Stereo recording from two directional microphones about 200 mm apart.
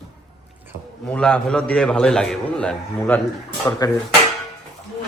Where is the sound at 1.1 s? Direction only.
5° left (ahead or behind).